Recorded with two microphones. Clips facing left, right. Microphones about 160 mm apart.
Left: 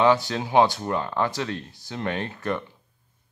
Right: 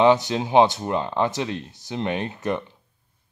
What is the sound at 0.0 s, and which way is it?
Speech, 20° right (ahead or behind).